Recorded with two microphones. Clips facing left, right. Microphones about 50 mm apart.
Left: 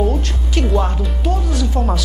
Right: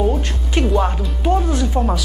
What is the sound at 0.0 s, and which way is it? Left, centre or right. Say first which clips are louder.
A woman's voice: even; centre.